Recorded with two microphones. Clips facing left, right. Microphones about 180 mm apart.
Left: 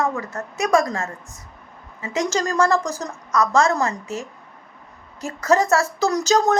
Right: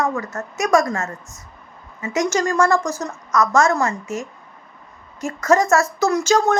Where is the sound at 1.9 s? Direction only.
30° left (ahead or behind).